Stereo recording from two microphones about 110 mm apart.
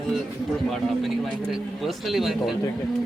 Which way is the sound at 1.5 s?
Centre (ahead or behind).